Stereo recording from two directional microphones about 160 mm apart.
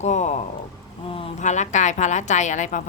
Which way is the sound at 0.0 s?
45° left (ahead or behind).